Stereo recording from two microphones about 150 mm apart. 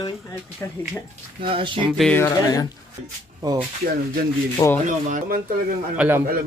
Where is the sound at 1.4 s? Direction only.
35° right (ahead or behind).